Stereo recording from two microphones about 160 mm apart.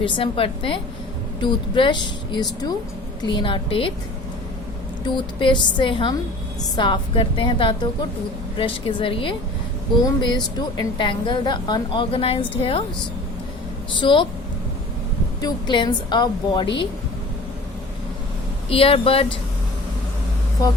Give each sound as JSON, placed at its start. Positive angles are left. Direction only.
{"t": 0.0, "sound": "a woman's voice", "side_deg": 35}
{"t": 5.0, "sound": "a woman's voice", "side_deg": 30}
{"t": 14.0, "sound": "a woman's voice", "side_deg": 30}
{"t": 15.4, "sound": "a woman's voice", "side_deg": 25}
{"t": 18.7, "sound": "a woman's voice", "side_deg": 35}